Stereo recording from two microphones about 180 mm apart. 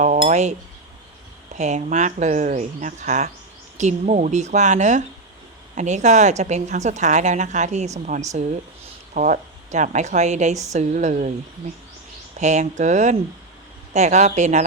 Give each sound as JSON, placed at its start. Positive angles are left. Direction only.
{"t": 0.0, "sound": "cutlery", "side_deg": -40}
{"t": 1.5, "sound": "speech", "side_deg": -40}
{"t": 12.4, "sound": "speech", "side_deg": -40}